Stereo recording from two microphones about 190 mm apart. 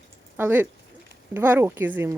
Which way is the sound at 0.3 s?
10° right (ahead or behind).